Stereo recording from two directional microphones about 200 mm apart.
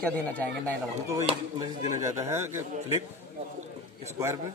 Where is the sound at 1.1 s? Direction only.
15° right (ahead or behind).